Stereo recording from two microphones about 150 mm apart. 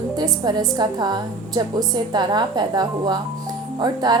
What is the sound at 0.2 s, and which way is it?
A woman's voice, 25° right (ahead or behind).